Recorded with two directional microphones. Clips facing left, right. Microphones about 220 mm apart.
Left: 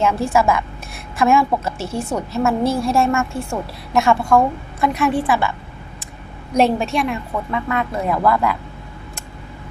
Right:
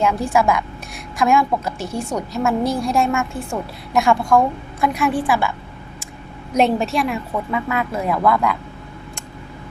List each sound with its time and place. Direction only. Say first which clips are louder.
0.0 s a woman's voice: left 1 dB; centre (ahead or behind)
1.8 s a woman's voice: left 1 dB; 15° right (ahead or behind)
2.1 s a woman's voice: left 1 dB; 5° left (ahead or behind)